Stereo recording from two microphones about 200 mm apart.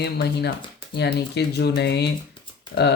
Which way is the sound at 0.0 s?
55° left (ahead or behind).